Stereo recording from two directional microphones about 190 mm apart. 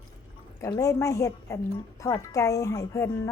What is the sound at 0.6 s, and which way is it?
Speech, 15° left (ahead or behind).